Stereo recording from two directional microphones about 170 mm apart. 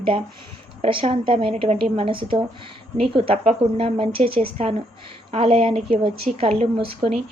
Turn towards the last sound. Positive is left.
turn(degrees=-35)  # may be behind; listen again after turning